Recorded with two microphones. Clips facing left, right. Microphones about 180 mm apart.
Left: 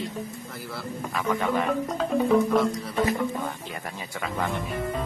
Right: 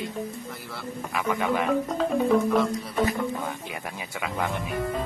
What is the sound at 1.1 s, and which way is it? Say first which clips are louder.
Speech: even; 15° right (ahead or behind).